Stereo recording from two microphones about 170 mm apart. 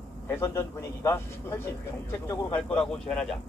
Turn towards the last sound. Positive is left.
turn(degrees=5)  # may be behind; listen again after turning